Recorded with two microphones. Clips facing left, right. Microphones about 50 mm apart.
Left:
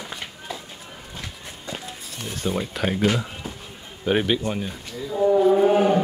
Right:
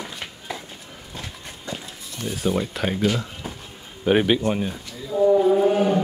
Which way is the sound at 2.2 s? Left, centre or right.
Centre.